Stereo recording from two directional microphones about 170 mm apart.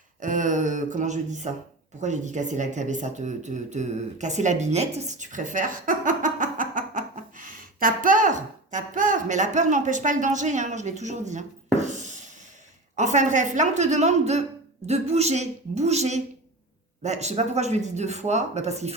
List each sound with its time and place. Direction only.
0.2 s a woman's voice: 50° right (ahead or behind)